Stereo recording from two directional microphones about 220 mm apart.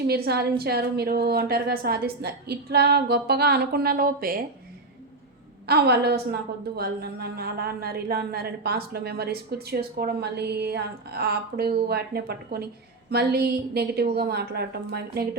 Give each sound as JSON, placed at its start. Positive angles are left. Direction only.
{"t": 0.1, "sound": "a woman's voice", "side_deg": -45}
{"t": 5.6, "sound": "a woman's voice", "side_deg": -45}